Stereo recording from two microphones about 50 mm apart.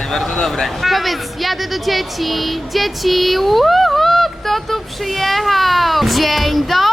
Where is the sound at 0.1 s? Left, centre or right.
Centre.